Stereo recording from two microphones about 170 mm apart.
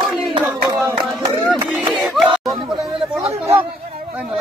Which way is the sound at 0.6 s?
20° right (ahead or behind).